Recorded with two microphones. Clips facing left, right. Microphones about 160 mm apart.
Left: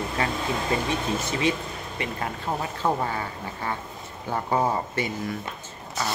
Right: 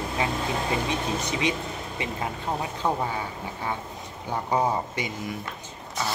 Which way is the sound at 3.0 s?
10° right (ahead or behind).